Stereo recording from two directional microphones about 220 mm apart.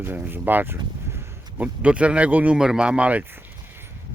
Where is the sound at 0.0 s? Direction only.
10° right (ahead or behind).